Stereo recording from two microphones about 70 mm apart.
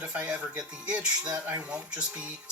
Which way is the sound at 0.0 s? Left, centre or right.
Centre.